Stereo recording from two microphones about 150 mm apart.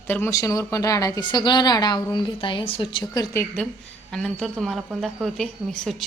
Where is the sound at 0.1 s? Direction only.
15° left (ahead or behind).